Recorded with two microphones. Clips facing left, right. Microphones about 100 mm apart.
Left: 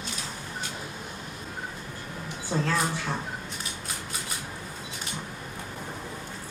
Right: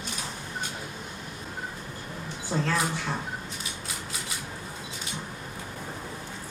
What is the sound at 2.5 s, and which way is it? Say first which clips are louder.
Speech: even; centre (ahead or behind).